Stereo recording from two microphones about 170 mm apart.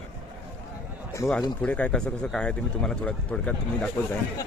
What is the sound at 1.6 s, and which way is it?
A man's voice, 10° left (ahead or behind).